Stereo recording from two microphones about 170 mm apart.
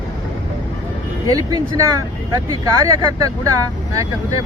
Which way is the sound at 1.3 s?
20° right (ahead or behind).